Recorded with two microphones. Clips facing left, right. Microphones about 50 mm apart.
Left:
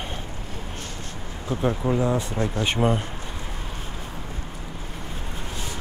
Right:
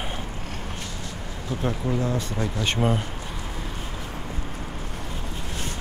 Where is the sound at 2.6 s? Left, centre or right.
Centre.